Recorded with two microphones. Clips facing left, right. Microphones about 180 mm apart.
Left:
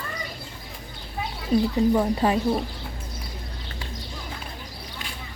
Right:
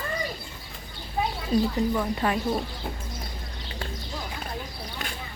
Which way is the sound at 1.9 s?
25° left (ahead or behind).